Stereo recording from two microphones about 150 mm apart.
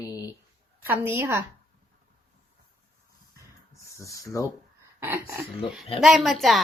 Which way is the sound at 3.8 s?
20° left (ahead or behind).